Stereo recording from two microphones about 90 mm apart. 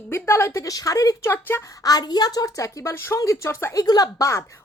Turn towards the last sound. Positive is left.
turn(degrees=35)  # may be behind; listen again after turning